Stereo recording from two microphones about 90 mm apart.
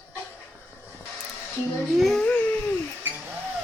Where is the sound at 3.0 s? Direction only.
20° right (ahead or behind).